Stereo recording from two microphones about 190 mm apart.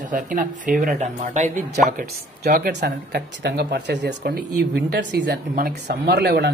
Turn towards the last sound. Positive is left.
turn(degrees=-60)  # may be behind; listen again after turning